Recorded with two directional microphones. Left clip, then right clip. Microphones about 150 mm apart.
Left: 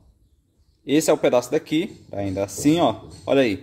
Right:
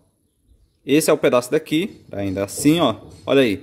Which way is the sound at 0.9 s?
25° right (ahead or behind).